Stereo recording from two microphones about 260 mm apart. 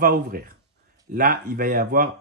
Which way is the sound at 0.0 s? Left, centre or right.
Right.